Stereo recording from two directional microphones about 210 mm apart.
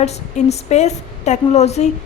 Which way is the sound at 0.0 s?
30° left (ahead or behind).